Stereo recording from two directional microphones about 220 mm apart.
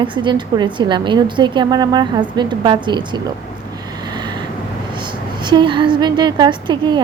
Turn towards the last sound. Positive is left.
turn(degrees=-20)  # may be behind; listen again after turning